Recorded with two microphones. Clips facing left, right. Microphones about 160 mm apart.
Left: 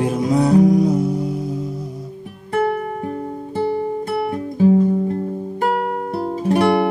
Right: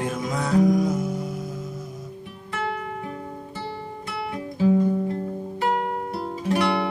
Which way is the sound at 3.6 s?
50° left (ahead or behind).